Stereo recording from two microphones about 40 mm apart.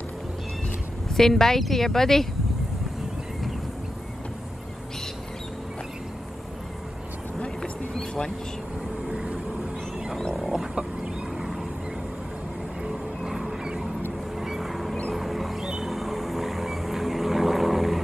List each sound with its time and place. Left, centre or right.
1.1 s speech: centre
9.1 s vehicle: centre
10.3 s a sound: centre
10.7 s chicken: right
13.2 s a sound: centre
14.4 s boat: centre
15.1 s music: centre
15.9 s vehicle: centre